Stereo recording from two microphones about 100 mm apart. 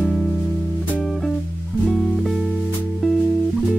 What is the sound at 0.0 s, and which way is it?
Music, centre (ahead or behind).